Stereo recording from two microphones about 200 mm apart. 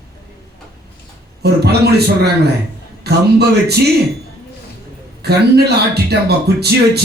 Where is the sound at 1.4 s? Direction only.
55° right (ahead or behind).